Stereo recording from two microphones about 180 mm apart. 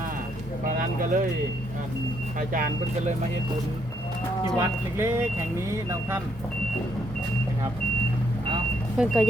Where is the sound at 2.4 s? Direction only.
50° right (ahead or behind).